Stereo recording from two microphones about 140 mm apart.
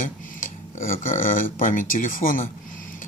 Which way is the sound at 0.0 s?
70° left (ahead or behind).